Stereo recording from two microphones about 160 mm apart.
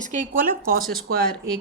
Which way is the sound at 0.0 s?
50° right (ahead or behind).